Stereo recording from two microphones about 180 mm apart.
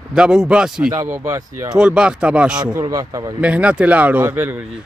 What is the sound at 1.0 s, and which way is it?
Speech, 15° right (ahead or behind).